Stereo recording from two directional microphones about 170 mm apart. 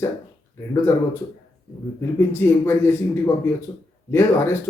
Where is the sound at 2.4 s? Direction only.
15° left (ahead or behind).